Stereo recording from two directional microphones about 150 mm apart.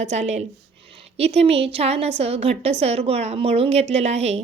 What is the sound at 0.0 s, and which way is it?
A woman's voice, 50° right (ahead or behind).